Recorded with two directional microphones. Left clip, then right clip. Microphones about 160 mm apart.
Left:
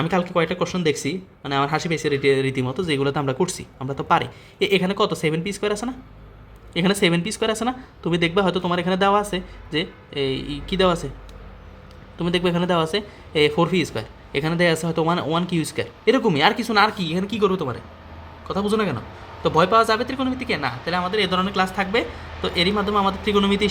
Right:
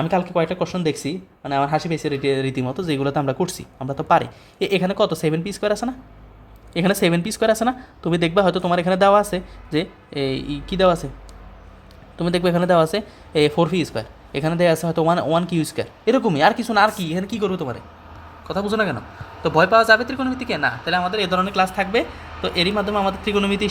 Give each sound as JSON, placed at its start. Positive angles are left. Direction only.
{"t": 0.0, "sound": "speech", "side_deg": -20}
{"t": 12.1, "sound": "speech", "side_deg": -30}
{"t": 20.5, "sound": "speech", "side_deg": -20}